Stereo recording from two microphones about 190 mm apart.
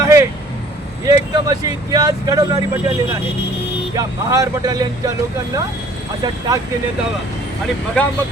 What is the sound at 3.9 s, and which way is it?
Speech, 15° right (ahead or behind).